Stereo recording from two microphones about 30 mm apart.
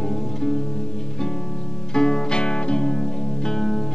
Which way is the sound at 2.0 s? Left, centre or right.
Left.